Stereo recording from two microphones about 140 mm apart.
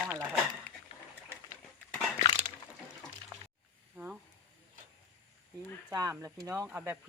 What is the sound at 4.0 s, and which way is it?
Speech, 15° right (ahead or behind).